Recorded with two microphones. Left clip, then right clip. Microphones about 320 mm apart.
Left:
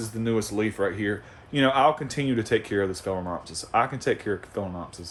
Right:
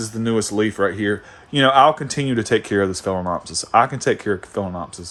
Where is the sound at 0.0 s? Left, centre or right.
Right.